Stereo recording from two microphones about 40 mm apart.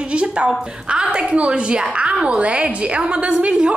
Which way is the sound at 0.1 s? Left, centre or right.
Right.